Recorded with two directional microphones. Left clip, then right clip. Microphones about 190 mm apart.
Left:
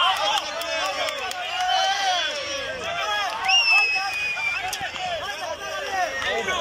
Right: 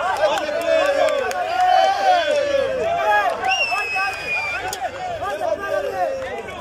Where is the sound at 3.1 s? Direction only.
65° right (ahead or behind).